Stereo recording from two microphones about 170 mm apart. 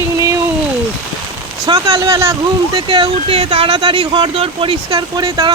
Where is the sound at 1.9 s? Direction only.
20° right (ahead or behind).